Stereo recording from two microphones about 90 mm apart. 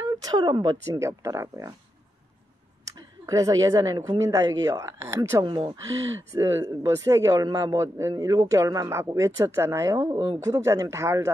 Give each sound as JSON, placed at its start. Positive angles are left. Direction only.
{"t": 0.2, "sound": "speech", "side_deg": -50}
{"t": 0.9, "sound": "a man's voice", "side_deg": -35}
{"t": 3.0, "sound": "a man's voice", "side_deg": -40}
{"t": 5.4, "sound": "speech", "side_deg": -60}
{"t": 6.3, "sound": "a man's voice", "side_deg": -35}
{"t": 10.1, "sound": "speech", "side_deg": -60}
{"t": 10.4, "sound": "a man's voice", "side_deg": -40}